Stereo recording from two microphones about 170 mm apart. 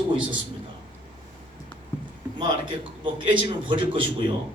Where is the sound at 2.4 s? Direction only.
30° right (ahead or behind).